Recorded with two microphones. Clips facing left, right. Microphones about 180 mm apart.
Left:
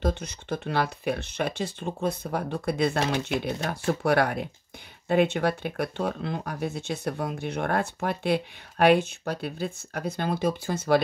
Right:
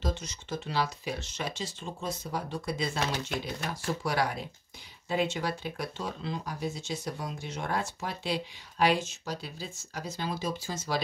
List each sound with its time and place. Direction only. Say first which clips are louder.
0.0 s speech: left 6 dB; 55° left (ahead or behind)